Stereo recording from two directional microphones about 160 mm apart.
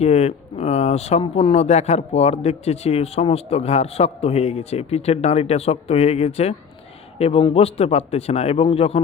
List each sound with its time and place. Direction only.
0.0 s speech: 40° left (ahead or behind)